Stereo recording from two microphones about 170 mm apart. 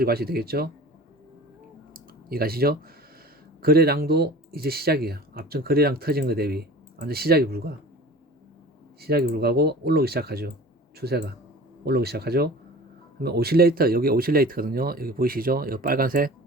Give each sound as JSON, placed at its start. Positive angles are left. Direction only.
{"t": 0.0, "sound": "speech", "side_deg": -65}
{"t": 1.9, "sound": "a sound", "side_deg": -60}
{"t": 3.6, "sound": "speech", "side_deg": -65}
{"t": 9.0, "sound": "speech", "side_deg": -65}